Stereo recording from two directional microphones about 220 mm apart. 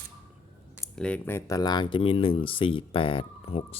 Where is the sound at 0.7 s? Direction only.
Centre (ahead or behind).